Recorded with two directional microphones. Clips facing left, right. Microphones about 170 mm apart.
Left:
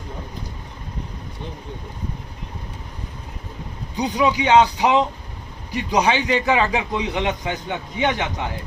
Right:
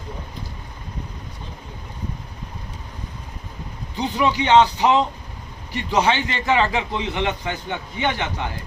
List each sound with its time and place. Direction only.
3.9 s a man's voice: 15° left (ahead or behind)